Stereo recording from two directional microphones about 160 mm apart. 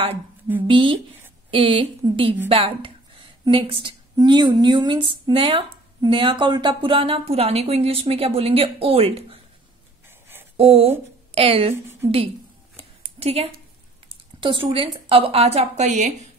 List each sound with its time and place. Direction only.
0.6 s a woman's voice: 30° right (ahead or behind)
10.0 s a sound: 15° right (ahead or behind)
10.6 s a woman's voice: 40° right (ahead or behind)
13.2 s a woman's voice: 35° right (ahead or behind)